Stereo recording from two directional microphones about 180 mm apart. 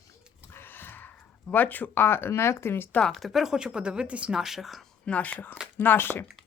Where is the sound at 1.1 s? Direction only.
10° left (ahead or behind).